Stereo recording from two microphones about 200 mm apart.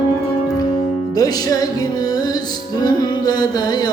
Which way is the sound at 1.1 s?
20° left (ahead or behind).